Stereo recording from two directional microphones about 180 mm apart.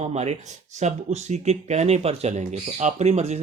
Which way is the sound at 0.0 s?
35° right (ahead or behind).